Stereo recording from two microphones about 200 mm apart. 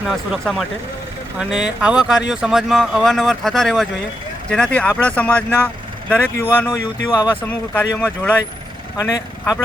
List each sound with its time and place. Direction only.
0.0 s speech: centre (ahead or behind)
9.0 s speech: 20° left (ahead or behind)